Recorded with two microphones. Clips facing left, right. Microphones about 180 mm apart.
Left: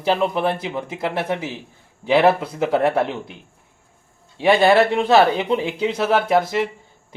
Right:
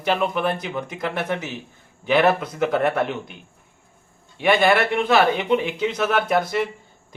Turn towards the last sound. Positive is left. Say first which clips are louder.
# left 3 dB
turn(degrees=25)  # may be behind; listen again after turning